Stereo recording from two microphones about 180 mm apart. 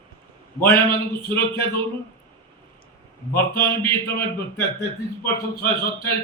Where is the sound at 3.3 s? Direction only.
10° left (ahead or behind).